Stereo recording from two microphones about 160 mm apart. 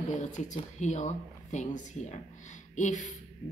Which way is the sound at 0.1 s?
50° left (ahead or behind).